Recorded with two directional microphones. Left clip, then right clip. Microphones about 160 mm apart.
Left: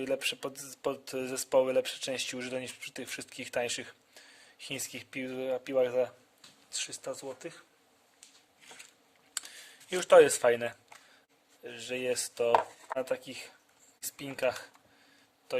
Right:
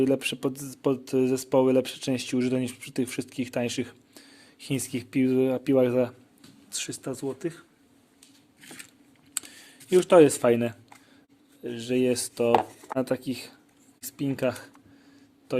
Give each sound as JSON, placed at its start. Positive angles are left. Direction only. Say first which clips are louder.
{"t": 0.0, "sound": "speech", "louder": "right 7 dB", "side_deg": -10}
{"t": 9.3, "sound": "a sound", "louder": "right 3 dB", "side_deg": -15}
{"t": 9.9, "sound": "speech", "louder": "right 4 dB", "side_deg": 0}
{"t": 11.6, "sound": "speech", "louder": "right 9 dB", "side_deg": -15}
{"t": 14.0, "sound": "speech", "louder": "right 4 dB", "side_deg": 0}